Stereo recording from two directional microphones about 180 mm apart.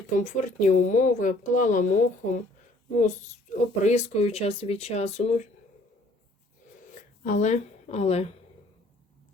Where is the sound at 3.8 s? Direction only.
35° left (ahead or behind).